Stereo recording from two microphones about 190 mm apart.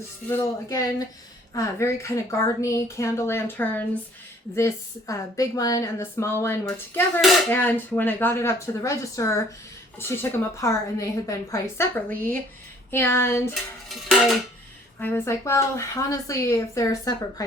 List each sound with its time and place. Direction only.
0.3 s a woman's voice: 15° left (ahead or behind)
14.9 s a woman's voice: 10° left (ahead or behind)